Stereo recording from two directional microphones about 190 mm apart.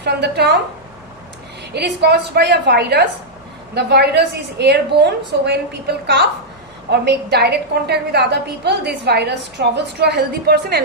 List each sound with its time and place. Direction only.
0.0 s a woman's voice: 60° right (ahead or behind)
1.7 s a woman's voice: 60° right (ahead or behind)